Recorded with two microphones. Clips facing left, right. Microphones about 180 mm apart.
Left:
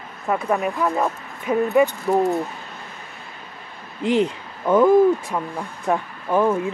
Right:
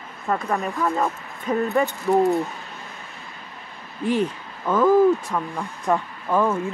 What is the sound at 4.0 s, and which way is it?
Speech, 20° left (ahead or behind).